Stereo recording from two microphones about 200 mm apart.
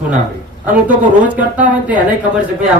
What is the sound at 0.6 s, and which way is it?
Speech, 40° right (ahead or behind).